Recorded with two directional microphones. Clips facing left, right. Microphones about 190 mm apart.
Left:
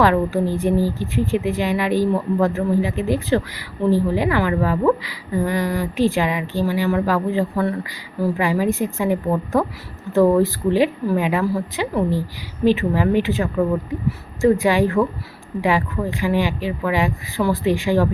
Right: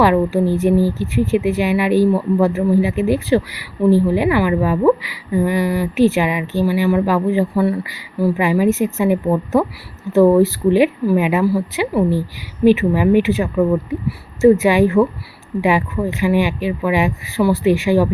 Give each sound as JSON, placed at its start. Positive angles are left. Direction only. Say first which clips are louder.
{"t": 0.0, "sound": "a woman's voice", "louder": "right 3 dB", "side_deg": -15}
{"t": 14.6, "sound": "a woman's voice", "louder": "right 4 dB", "side_deg": -15}